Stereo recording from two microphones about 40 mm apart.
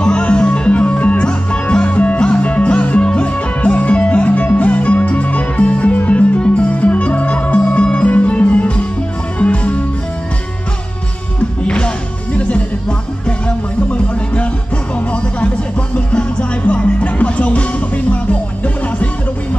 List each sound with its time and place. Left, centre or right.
0.0 s music: left
11.6 s music: left
13.8 s music: left
16.1 s music: left
17.0 s music: left